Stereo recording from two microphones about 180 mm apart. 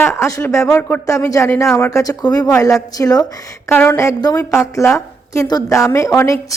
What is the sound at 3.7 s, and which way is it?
A woman's voice, 5° left (ahead or behind).